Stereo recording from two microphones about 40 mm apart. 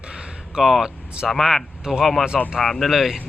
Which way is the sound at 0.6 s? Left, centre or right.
Centre.